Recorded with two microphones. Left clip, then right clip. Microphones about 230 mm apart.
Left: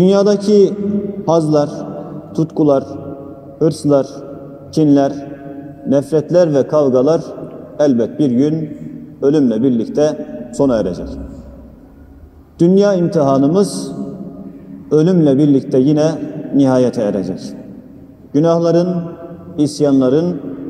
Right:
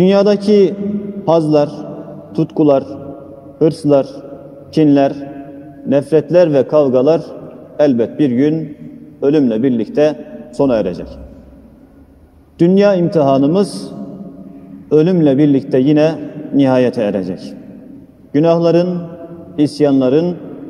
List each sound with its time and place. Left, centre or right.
0.0 s a man's voice: right
12.5 s a man's voice: right